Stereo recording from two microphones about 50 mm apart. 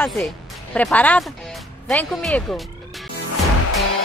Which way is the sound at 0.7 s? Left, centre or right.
Left.